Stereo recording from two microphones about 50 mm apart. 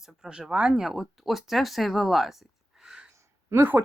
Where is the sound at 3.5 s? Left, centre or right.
Right.